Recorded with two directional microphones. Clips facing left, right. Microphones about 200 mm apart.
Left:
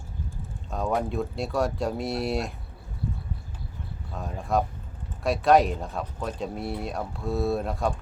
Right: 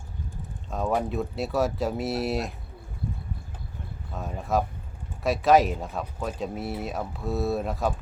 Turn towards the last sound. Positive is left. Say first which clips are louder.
# even
turn(degrees=0)  # may be behind; listen again after turning